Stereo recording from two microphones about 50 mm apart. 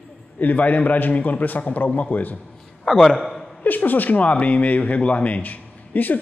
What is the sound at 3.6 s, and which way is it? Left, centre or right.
Speech, left.